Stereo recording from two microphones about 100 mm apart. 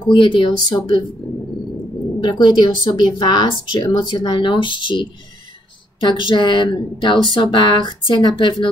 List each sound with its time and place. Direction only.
0.1 s speech: 55° left (ahead or behind)
2.1 s speech: 45° left (ahead or behind)